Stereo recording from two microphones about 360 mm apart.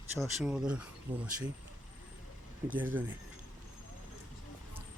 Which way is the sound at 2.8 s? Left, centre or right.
Centre.